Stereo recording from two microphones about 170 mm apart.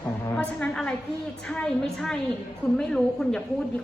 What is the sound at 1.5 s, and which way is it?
A woman's voice, 5° left (ahead or behind).